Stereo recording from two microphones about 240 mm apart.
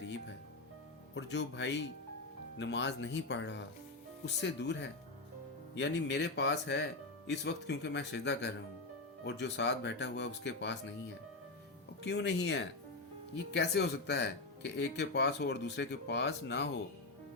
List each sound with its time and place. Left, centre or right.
1.1 s speech: left
12.0 s speech: left